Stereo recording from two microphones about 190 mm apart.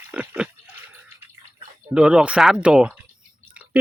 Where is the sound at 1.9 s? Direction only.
5° right (ahead or behind).